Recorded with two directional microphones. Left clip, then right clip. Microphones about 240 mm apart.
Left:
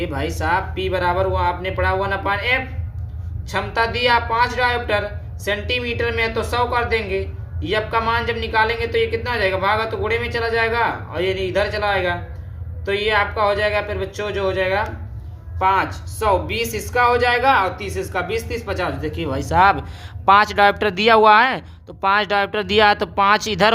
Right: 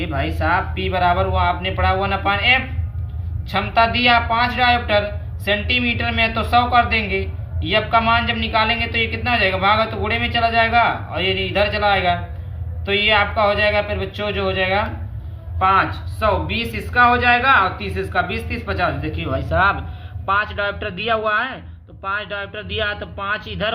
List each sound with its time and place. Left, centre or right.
0.0 s speech: left
6.1 s speech: centre; by 19.7 s left
20.2 s speech: left